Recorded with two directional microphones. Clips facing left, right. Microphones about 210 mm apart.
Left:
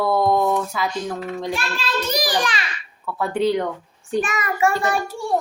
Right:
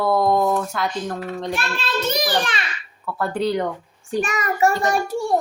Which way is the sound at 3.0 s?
Centre (ahead or behind).